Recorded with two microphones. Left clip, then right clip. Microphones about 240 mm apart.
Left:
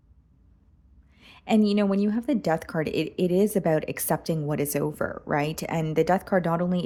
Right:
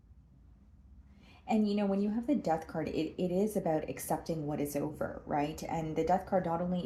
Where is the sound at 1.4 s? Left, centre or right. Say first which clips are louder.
Left 8 dB; left.